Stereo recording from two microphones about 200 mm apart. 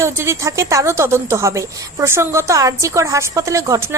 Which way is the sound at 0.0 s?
15° right (ahead or behind).